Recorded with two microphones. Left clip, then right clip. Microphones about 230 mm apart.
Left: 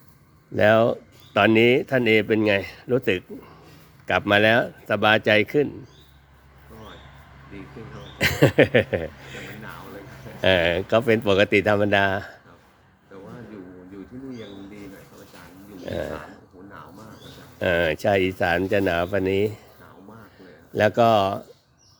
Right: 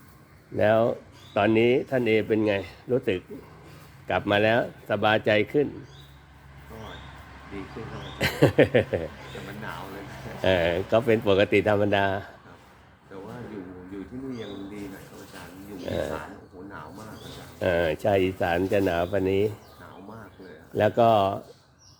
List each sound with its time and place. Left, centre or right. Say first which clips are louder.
0.5 s speech: left 4 dB; left
8.2 s speech: left 3 dB; left
10.4 s speech: left 4 dB; centre
15.9 s speech: even; centre
17.6 s speech: left 3 dB; left
20.7 s speech: left 2 dB; left